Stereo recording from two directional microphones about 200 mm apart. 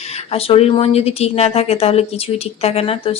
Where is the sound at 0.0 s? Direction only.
30° left (ahead or behind).